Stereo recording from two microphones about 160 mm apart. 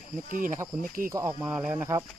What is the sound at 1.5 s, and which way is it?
Speech, 5° right (ahead or behind).